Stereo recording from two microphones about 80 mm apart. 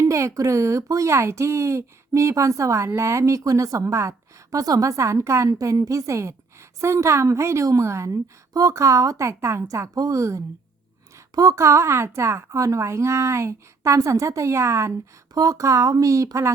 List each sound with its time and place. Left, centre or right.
0.0 s a woman's voice: right